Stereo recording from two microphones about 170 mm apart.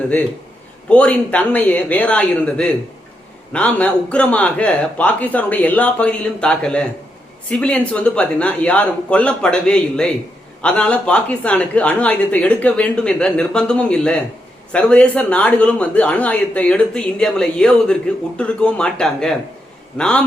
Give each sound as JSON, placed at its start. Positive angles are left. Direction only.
{"t": 0.9, "sound": "speech", "side_deg": 10}